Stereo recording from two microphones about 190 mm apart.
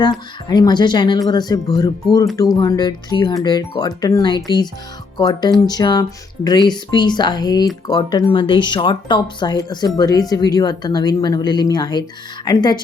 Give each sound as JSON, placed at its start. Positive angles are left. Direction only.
{"t": 0.0, "sound": "speech", "side_deg": 20}